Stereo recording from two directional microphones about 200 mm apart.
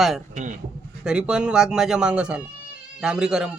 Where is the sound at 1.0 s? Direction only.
5° right (ahead or behind).